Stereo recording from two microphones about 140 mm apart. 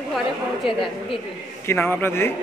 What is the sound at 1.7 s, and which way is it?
Speech, 15° left (ahead or behind).